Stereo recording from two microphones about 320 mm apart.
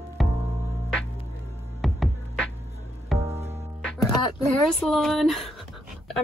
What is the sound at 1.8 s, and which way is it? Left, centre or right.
Music, centre.